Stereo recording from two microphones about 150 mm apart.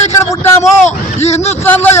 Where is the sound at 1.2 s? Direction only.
45° left (ahead or behind).